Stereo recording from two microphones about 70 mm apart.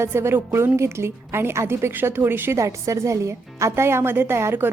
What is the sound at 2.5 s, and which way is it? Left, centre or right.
Speech, right.